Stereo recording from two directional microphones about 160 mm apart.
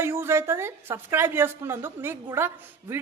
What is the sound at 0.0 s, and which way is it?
A man's voice, 15° right (ahead or behind).